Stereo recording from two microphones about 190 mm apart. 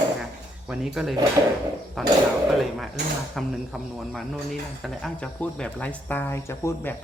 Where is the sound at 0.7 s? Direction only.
5° right (ahead or behind).